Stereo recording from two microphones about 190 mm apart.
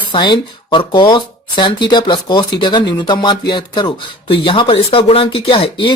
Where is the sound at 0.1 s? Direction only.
25° left (ahead or behind).